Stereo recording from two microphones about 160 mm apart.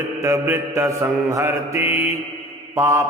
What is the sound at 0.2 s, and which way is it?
Mantra, 15° right (ahead or behind).